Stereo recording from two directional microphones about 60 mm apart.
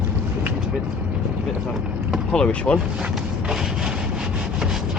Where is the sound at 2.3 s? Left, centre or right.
Centre.